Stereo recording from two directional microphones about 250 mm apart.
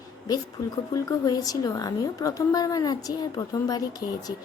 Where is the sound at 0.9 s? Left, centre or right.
Centre.